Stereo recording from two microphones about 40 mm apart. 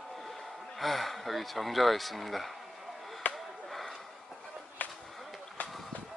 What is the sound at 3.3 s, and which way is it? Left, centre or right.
Chop, centre.